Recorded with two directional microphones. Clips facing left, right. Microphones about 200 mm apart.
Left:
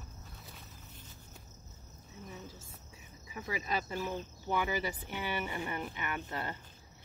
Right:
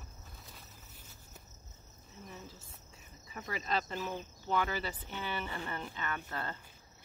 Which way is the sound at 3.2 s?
10° left (ahead or behind).